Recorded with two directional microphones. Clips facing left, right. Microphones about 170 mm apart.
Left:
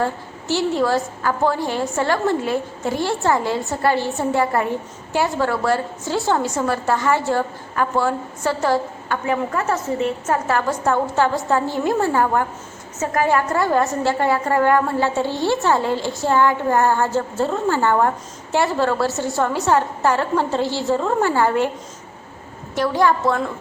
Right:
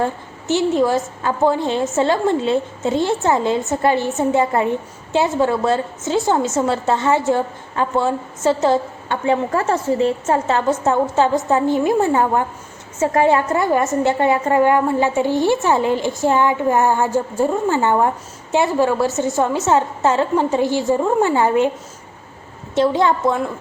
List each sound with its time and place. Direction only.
0.0 s a woman's voice: 20° right (ahead or behind)
22.7 s a woman's voice: 25° right (ahead or behind)